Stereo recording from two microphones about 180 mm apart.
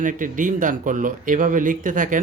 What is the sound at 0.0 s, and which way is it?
A man's voice, 45° right (ahead or behind).